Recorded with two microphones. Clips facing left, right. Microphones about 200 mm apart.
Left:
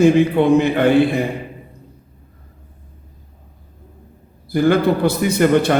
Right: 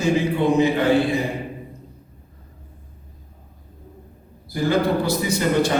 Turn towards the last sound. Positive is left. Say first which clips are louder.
# left 5 dB
turn(degrees=60)  # may be behind; listen again after turning